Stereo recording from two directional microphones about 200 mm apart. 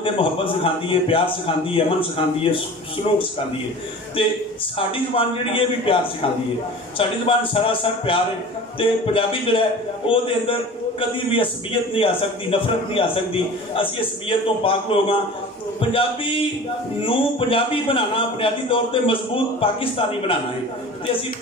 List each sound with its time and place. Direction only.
0.0 s a man's voice: 25° left (ahead or behind)
4.2 s a man's voice: 25° left (ahead or behind)
7.0 s a man's voice: 25° left (ahead or behind)
11.9 s a man's voice: 25° left (ahead or behind)